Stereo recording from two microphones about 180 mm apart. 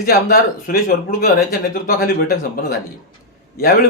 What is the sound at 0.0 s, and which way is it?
Speech, 55° left (ahead or behind).